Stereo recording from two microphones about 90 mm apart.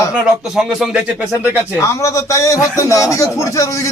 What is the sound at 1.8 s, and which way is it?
A man's voice, 35° left (ahead or behind).